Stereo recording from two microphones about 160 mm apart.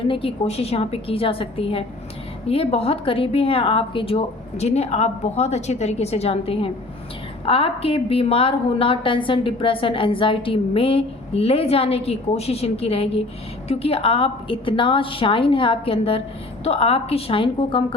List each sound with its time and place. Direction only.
0.0 s a woman's voice: 35° left (ahead or behind)